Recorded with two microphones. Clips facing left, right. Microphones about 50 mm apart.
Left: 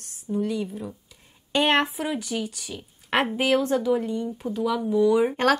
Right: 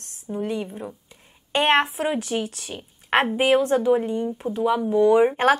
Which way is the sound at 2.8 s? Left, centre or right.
Right.